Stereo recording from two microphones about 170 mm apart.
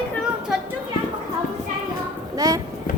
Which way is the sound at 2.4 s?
20° right (ahead or behind).